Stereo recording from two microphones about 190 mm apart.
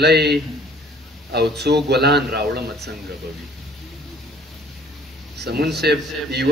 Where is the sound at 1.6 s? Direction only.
60° right (ahead or behind).